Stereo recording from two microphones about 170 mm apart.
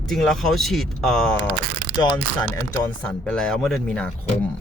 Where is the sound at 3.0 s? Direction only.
5° left (ahead or behind).